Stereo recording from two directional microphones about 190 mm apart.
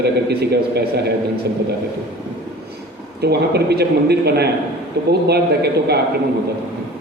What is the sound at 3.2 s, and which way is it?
A man's voice, 60° right (ahead or behind).